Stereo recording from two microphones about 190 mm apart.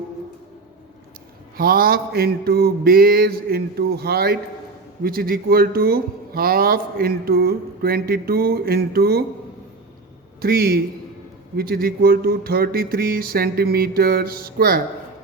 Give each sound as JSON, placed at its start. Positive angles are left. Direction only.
{"t": 1.5, "sound": "speech", "side_deg": -50}
{"t": 10.4, "sound": "speech", "side_deg": -55}